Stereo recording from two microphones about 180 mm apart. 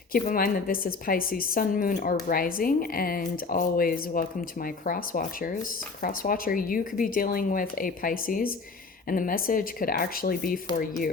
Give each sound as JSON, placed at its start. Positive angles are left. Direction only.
{"t": 0.1, "sound": "speech", "side_deg": 50}